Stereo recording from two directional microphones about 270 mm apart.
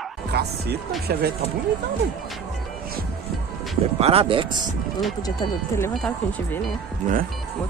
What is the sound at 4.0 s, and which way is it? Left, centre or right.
Speech, right.